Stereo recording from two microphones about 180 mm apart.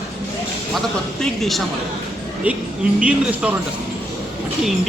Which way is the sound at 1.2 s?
Centre (ahead or behind).